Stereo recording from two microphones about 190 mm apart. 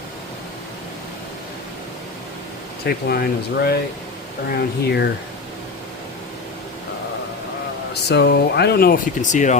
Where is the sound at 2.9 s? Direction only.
60° left (ahead or behind).